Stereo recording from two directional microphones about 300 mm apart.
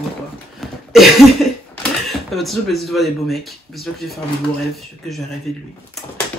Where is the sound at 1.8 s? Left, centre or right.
Centre.